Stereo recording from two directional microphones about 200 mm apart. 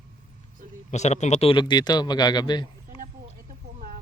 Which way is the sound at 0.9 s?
35° left (ahead or behind).